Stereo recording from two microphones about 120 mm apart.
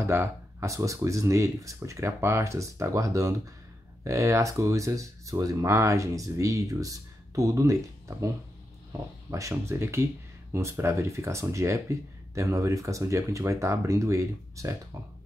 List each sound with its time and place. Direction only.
0.0 s speech: 20° right (ahead or behind)
9.3 s speech: 25° right (ahead or behind)